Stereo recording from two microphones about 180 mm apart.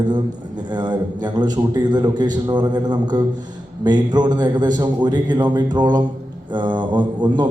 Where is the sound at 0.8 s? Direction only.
25° right (ahead or behind).